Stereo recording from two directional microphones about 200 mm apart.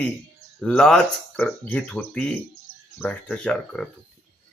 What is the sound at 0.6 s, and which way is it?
Speech, 5° left (ahead or behind).